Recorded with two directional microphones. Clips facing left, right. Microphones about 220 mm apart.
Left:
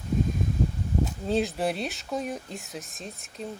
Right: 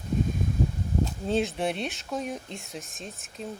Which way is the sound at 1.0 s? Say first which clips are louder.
Even; centre (ahead or behind).